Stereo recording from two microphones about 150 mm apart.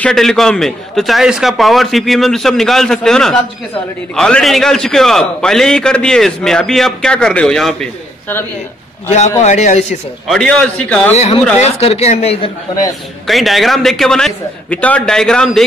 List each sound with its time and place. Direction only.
0.0 s a man's voice: 5° left (ahead or behind)
9.4 s speech: 50° left (ahead or behind)
10.2 s a man's voice: 5° left (ahead or behind)
11.1 s speech: 45° left (ahead or behind)
13.3 s a man's voice: centre (ahead or behind)